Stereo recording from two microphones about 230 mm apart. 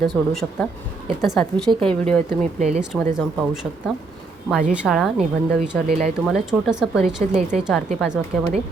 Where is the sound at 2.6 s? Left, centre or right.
Right.